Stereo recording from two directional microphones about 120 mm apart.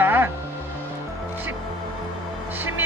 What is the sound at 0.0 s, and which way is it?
Music, 15° right (ahead or behind).